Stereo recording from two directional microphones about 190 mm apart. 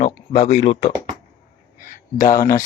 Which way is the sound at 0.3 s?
50° left (ahead or behind).